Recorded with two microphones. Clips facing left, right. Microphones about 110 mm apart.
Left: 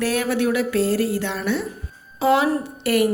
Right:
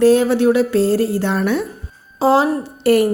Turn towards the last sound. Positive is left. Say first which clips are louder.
# right 5 dB
turn(degrees=-35)  # may be behind; listen again after turning